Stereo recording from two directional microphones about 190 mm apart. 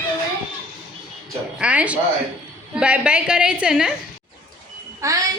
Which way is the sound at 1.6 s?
5° right (ahead or behind).